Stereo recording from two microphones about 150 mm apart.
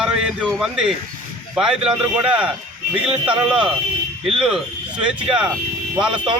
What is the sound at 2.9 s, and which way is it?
A man's voice, 5° right (ahead or behind).